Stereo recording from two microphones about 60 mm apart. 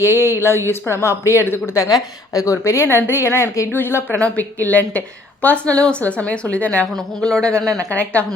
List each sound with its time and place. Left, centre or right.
0.3 s a woman's voice: left
1.7 s a woman's voice: left
3.7 s speech: left
4.1 s a woman's voice: left
6.9 s a man's voice: centre